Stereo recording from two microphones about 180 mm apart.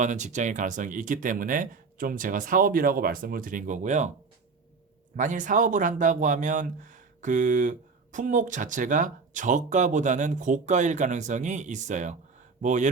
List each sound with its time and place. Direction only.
0.0 s speech: 45° right (ahead or behind)
5.1 s speech: 45° right (ahead or behind)